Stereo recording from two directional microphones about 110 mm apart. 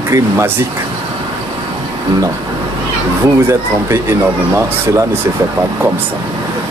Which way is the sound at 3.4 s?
25° right (ahead or behind).